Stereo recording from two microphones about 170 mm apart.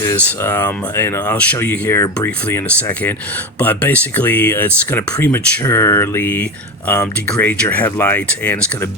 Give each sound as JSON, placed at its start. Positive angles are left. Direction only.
{"t": 0.0, "sound": "speech", "side_deg": 15}